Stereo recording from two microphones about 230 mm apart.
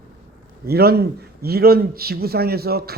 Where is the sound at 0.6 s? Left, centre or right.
Right.